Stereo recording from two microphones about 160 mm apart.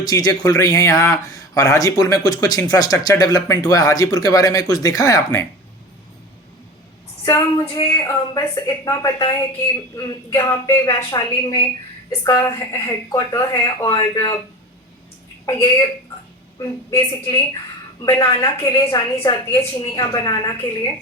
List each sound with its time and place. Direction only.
0.0 s speech: 25° left (ahead or behind)
7.3 s speech: 20° left (ahead or behind)
15.4 s speech: 25° left (ahead or behind)